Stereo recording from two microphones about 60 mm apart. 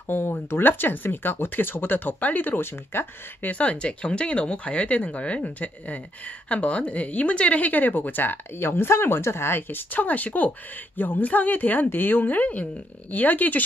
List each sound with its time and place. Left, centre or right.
0.1 s speech: left
3.5 s speech: left